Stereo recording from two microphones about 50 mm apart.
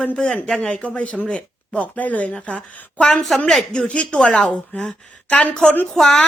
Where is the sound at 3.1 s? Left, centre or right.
Centre.